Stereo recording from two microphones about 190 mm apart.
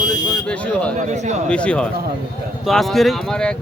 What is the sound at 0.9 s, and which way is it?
Speech, 40° right (ahead or behind).